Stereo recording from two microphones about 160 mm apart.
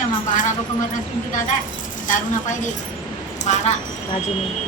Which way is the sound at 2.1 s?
55° left (ahead or behind).